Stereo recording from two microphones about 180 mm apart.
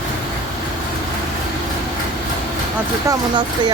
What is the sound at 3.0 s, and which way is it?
Speech, 25° right (ahead or behind).